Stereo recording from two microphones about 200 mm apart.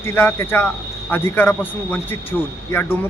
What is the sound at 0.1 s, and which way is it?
Speech, 10° left (ahead or behind).